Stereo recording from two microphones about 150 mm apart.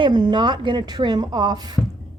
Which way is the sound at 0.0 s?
30° right (ahead or behind).